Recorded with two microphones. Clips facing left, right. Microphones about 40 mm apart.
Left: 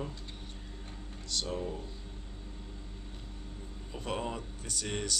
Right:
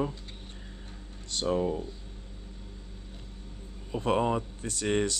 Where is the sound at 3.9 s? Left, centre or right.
Right.